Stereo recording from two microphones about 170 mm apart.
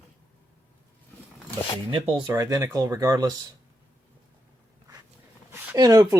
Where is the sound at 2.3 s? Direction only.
20° right (ahead or behind).